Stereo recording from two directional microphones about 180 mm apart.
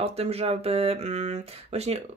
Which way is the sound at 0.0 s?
35° right (ahead or behind).